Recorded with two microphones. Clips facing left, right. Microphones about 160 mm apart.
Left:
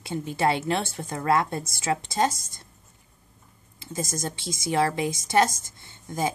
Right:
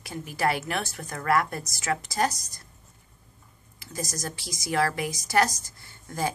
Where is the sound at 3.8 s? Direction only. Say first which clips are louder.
Left 3 dB; 25° left (ahead or behind).